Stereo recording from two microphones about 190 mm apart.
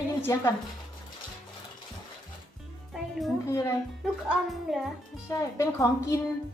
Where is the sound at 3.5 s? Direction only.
15° left (ahead or behind).